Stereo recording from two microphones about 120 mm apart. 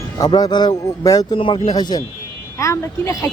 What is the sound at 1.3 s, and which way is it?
Speech, 45° left (ahead or behind).